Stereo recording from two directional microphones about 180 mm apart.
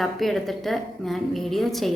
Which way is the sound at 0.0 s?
Centre (ahead or behind).